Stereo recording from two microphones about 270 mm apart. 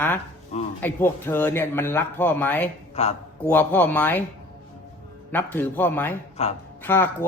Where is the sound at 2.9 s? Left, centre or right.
Left.